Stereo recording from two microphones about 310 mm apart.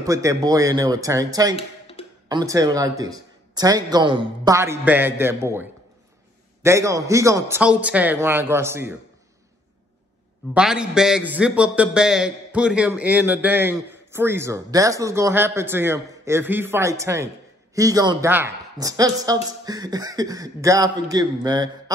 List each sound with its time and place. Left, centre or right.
0.0 s a man's voice: centre
1.6 s a sound: centre
2.2 s a man's voice: centre
10.5 s a man's voice: centre